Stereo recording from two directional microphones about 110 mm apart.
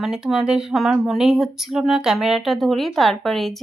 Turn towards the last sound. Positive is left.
turn(degrees=5)  # may be behind; listen again after turning